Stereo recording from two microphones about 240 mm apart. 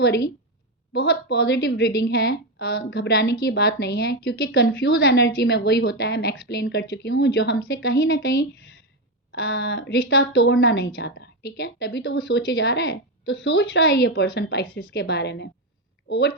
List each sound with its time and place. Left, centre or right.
0.9 s a woman's voice: left